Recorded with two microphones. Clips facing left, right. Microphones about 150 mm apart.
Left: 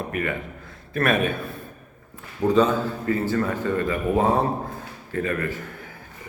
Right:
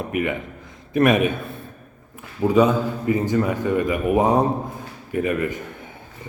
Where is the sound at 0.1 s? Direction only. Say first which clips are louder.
Right 3 dB; 15° right (ahead or behind).